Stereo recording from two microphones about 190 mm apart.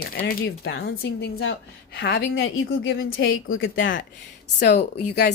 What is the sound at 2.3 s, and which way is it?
Speech, 90° left.